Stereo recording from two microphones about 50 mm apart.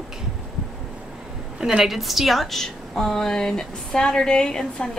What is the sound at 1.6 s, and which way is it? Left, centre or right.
A woman's voice, centre.